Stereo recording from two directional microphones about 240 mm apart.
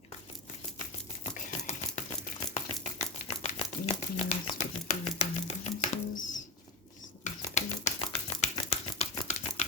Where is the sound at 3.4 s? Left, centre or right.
Left.